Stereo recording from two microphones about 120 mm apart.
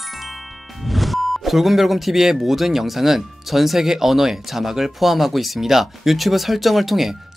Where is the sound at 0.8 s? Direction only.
Centre (ahead or behind).